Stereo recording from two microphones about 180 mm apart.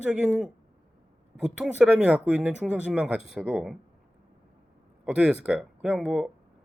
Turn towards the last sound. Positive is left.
turn(degrees=-5)  # may be behind; listen again after turning